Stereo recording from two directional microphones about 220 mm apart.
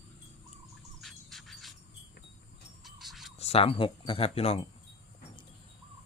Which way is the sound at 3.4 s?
25° left (ahead or behind).